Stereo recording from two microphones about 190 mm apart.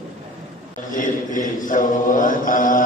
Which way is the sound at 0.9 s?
45° left (ahead or behind).